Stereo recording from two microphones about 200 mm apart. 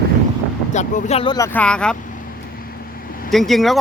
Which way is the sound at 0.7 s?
35° left (ahead or behind).